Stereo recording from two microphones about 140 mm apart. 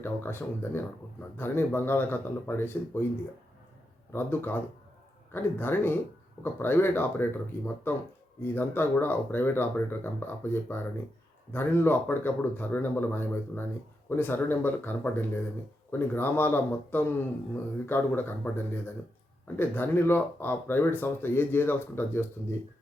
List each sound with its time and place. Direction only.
0.0 s speech: 15° left (ahead or behind)
4.1 s speech: 15° left (ahead or behind)